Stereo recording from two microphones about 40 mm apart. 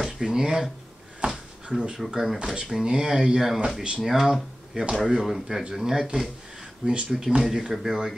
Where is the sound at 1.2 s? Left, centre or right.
Right.